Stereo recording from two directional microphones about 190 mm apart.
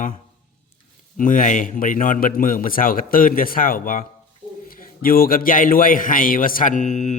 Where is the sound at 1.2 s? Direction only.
45° left (ahead or behind).